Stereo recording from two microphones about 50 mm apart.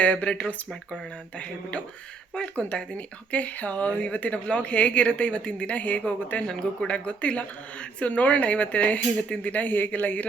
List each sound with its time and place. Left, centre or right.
0.0 s speech: left
2.3 s speech: left